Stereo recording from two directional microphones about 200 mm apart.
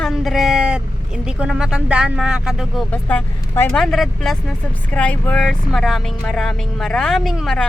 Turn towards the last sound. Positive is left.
turn(degrees=0)  # may be behind; listen again after turning